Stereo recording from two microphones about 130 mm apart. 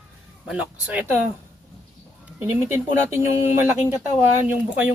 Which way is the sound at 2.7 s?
20° right (ahead or behind).